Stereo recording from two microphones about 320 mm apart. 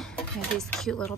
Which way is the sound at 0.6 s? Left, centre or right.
Centre.